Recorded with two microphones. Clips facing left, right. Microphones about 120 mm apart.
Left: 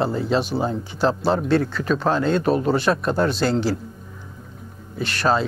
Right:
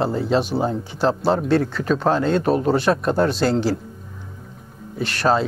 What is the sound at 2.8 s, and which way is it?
Speech, 35° right (ahead or behind).